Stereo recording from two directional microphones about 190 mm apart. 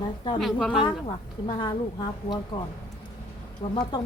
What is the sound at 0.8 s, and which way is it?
A woman's voice, 30° left (ahead or behind).